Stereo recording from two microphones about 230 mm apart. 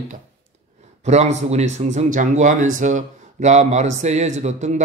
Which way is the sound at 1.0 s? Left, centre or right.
Right.